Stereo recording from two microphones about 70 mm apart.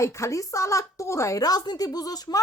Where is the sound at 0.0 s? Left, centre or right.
Left.